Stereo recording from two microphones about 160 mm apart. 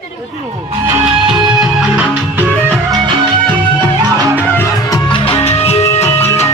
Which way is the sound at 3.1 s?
30° right (ahead or behind).